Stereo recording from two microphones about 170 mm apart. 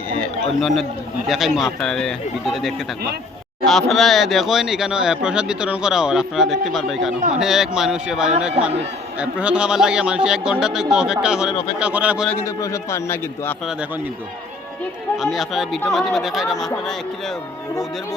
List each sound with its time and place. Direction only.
0.2 s a sound: centre (ahead or behind)
1.3 s speech: centre (ahead or behind)
12.5 s a man's voice: 20° left (ahead or behind)
15.2 s speech: centre (ahead or behind)